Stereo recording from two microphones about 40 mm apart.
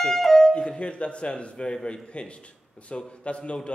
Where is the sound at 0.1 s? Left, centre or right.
Centre.